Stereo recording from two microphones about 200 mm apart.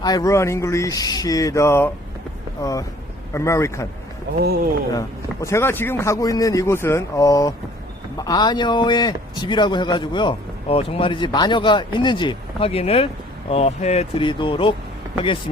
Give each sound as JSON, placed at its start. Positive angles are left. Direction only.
{"t": 0.0, "sound": "speech", "side_deg": 20}
{"t": 4.4, "sound": "speech", "side_deg": -55}
{"t": 4.9, "sound": "a man's voice", "side_deg": 15}